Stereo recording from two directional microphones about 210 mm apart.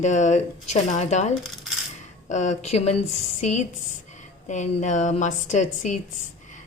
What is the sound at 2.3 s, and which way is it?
Speech, 35° left (ahead or behind).